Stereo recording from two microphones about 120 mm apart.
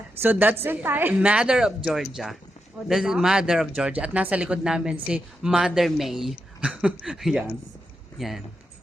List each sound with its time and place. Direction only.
0.2 s a woman's voice: 15° right (ahead or behind)